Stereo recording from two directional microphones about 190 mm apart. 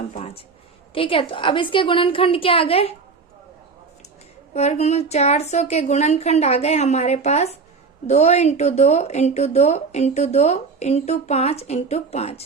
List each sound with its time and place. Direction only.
0.1 s a sound: 30° left (ahead or behind)
0.9 s a woman's voice: 30° left (ahead or behind)
4.5 s speech: 35° left (ahead or behind)